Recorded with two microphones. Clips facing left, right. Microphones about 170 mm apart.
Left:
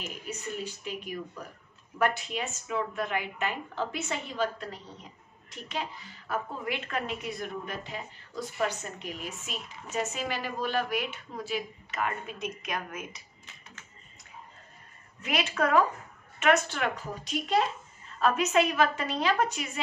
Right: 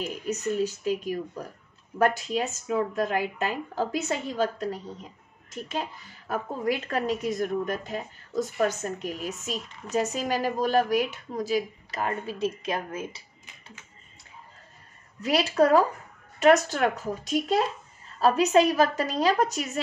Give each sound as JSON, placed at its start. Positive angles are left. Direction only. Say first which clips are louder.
{"t": 0.3, "sound": "a woman's voice", "louder": "right 10 dB", "side_deg": -40}
{"t": 15.2, "sound": "a woman's voice", "louder": "right 7 dB", "side_deg": -35}